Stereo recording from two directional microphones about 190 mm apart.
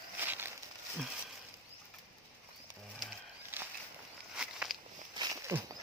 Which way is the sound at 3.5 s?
10° right (ahead or behind).